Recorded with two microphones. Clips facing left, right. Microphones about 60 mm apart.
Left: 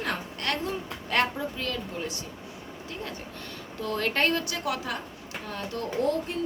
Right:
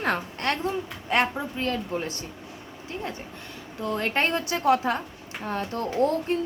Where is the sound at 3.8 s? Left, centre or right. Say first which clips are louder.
Right 1 dB; right.